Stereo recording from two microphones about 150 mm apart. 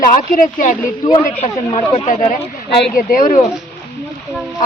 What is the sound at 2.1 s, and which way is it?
Speech, 55° left (ahead or behind).